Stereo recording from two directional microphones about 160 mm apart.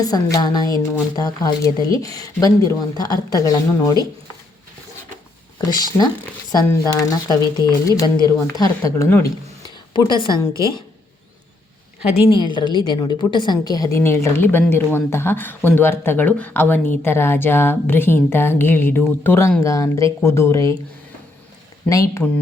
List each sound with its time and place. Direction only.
0.0 s a woman's voice: 25° left (ahead or behind)
5.5 s a woman's voice: 25° left (ahead or behind)
9.6 s a sound: 30° left (ahead or behind)
10.5 s a woman's voice: 20° right (ahead or behind)
12.1 s a woman's voice: 30° left (ahead or behind)
21.8 s a woman's voice: 20° left (ahead or behind)